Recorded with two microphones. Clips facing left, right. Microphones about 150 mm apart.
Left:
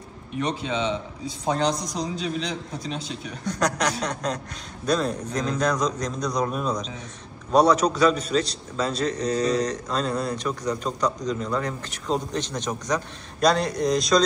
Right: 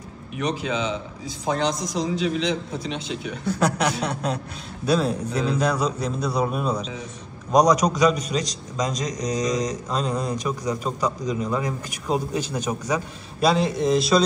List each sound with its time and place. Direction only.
0.3 s a man's voice: 35° left (ahead or behind)
3.4 s a man's voice: 5° right (ahead or behind)